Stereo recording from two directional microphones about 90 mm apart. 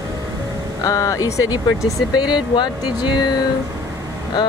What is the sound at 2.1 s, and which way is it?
Speech, 55° left (ahead or behind).